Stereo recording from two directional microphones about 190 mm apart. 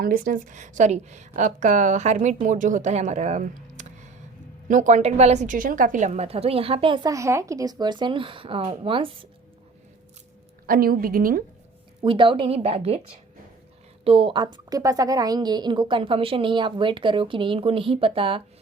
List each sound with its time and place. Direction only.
0.0 s a woman's voice: 45° right (ahead or behind); by 9.1 s 30° right (ahead or behind)
10.7 s a woman's voice: 50° right (ahead or behind)
12.0 s a woman's voice: 25° right (ahead or behind)
14.0 s a woman's voice: 30° right (ahead or behind)